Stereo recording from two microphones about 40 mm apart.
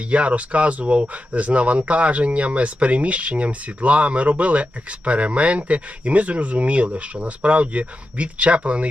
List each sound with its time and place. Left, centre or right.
0.1 s speech: right